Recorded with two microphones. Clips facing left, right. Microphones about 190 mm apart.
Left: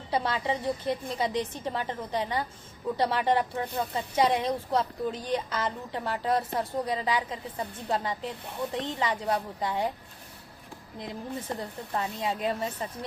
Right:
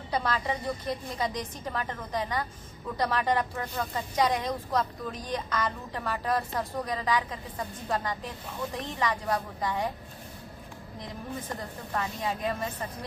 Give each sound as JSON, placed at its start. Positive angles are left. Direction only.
{"t": 0.1, "sound": "speech", "side_deg": 25}
{"t": 11.0, "sound": "speech", "side_deg": 20}